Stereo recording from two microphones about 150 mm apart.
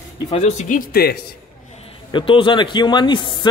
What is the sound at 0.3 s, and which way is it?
Speech, 45° left (ahead or behind).